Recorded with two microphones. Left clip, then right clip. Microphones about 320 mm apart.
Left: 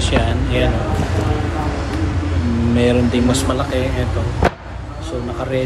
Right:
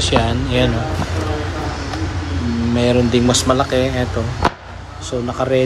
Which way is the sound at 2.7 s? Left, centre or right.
Centre.